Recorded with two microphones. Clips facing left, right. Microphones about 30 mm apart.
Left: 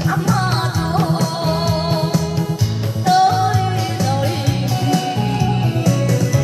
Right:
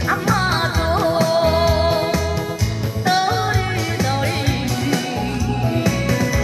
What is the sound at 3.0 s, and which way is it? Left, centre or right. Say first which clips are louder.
Music: left 5 dB; right.